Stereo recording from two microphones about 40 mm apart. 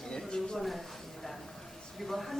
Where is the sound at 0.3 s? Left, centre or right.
Left.